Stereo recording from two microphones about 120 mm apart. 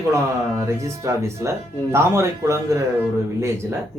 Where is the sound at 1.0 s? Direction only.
25° right (ahead or behind).